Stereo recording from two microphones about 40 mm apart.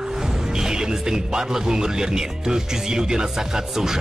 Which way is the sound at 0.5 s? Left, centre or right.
Centre.